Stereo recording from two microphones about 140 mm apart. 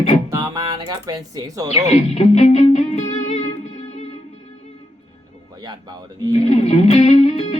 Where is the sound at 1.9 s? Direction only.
55° left (ahead or behind).